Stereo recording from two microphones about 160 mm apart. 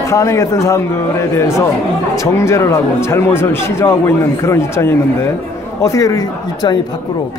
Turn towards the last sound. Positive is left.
turn(degrees=25)  # may be behind; listen again after turning